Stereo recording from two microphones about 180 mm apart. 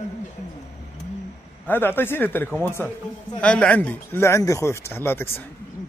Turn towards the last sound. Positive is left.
turn(degrees=10)  # may be behind; listen again after turning